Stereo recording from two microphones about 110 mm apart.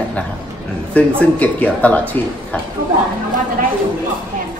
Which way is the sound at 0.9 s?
15° left (ahead or behind).